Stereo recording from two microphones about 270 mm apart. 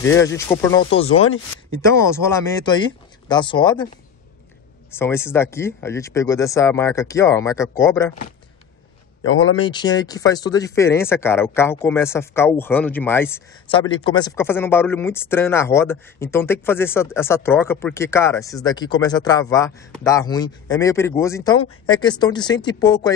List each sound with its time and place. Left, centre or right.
0.1 s speech: centre
1.0 s speech: left
1.8 s speech: centre
4.9 s speech: centre
9.2 s speech: left
9.6 s speech: centre
13.7 s speech: centre